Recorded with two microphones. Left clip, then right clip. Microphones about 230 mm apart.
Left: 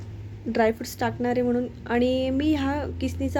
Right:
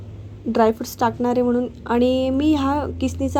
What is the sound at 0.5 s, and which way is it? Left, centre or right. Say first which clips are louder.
A woman's voice: right 5 dB; centre.